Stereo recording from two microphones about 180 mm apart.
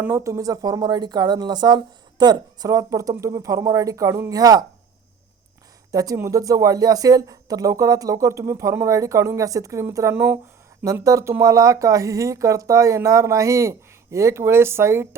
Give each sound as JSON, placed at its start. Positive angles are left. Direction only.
{"t": 0.0, "sound": "speech", "side_deg": -15}
{"t": 5.9, "sound": "speech", "side_deg": -20}